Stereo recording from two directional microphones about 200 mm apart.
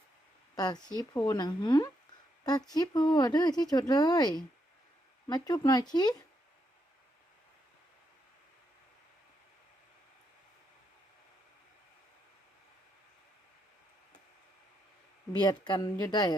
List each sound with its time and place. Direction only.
0.5 s speech: 20° left (ahead or behind)
15.3 s speech: 20° left (ahead or behind)